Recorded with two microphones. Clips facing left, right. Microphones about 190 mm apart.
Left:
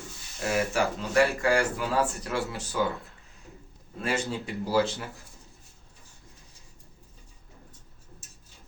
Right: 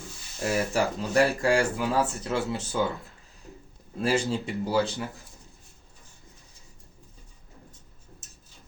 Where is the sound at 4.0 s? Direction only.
30° right (ahead or behind).